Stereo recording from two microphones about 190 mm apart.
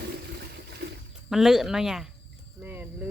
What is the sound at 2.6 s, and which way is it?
Cricket, 10° right (ahead or behind).